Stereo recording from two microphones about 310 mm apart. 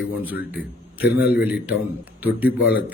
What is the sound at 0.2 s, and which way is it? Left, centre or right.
A man's voice, centre.